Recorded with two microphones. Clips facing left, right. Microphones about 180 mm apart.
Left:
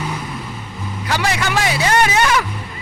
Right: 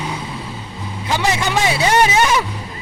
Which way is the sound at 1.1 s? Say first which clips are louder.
Right 1 dB; 20° right (ahead or behind).